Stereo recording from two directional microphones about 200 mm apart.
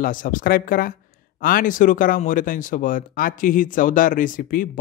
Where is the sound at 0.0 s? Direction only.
45° left (ahead or behind).